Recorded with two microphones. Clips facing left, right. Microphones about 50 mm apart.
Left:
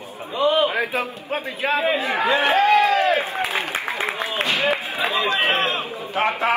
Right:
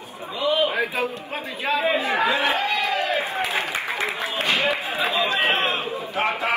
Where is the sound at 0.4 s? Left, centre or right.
Left.